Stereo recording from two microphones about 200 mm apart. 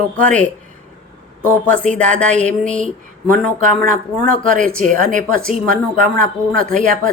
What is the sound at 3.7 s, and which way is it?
Speech, 40° right (ahead or behind).